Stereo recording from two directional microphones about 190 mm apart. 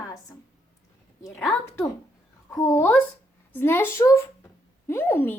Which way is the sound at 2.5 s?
15° left (ahead or behind).